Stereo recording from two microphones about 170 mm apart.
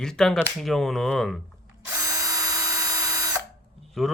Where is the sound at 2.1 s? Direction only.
20° right (ahead or behind).